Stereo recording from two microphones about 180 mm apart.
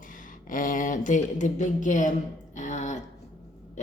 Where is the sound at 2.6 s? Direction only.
40° left (ahead or behind).